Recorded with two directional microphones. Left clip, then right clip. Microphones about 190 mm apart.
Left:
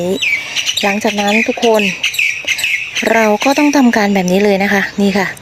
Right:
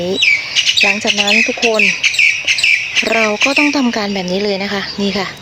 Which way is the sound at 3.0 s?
45° left (ahead or behind).